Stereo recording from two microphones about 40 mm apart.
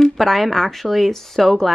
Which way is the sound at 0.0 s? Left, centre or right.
Centre.